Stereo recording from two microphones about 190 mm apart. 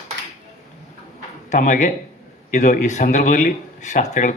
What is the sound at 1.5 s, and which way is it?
Speech, 40° left (ahead or behind).